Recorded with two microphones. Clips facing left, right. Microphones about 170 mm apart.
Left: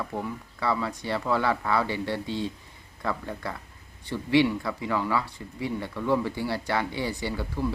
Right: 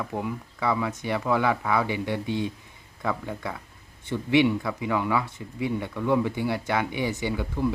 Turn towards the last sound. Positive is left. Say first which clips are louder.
# right 3 dB
turn(degrees=-20)  # may be behind; listen again after turning